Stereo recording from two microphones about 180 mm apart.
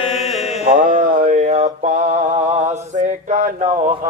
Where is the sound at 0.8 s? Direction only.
45° right (ahead or behind).